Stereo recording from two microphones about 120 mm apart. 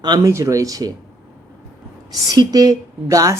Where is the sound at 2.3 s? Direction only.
30° right (ahead or behind).